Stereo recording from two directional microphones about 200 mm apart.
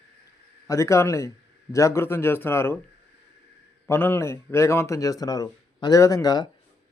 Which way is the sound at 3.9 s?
10° left (ahead or behind).